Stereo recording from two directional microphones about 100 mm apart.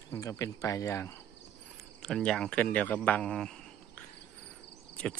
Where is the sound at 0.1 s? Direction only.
30° left (ahead or behind).